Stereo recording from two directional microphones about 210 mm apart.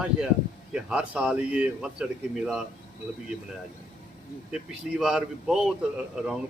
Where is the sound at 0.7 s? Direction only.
5° right (ahead or behind).